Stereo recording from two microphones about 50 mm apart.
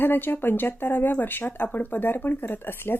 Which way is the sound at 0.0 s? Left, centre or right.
Left.